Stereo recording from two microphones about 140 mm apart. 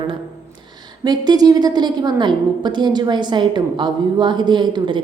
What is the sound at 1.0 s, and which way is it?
A woman's voice, 30° right (ahead or behind).